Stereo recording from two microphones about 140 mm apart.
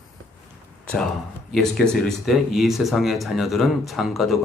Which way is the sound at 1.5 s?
5° left (ahead or behind).